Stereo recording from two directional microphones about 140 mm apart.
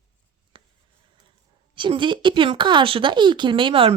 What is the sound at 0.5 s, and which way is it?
Writing, 35° right (ahead or behind).